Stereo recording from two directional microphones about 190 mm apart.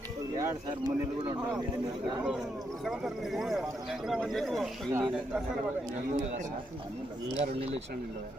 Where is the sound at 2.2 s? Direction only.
5° right (ahead or behind).